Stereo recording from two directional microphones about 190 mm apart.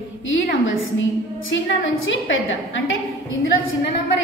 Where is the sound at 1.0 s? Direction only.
85° left.